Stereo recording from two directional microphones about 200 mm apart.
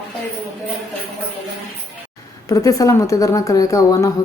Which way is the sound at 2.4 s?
15° left (ahead or behind).